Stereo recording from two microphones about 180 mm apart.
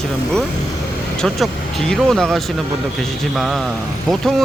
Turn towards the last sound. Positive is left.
turn(degrees=0)  # may be behind; listen again after turning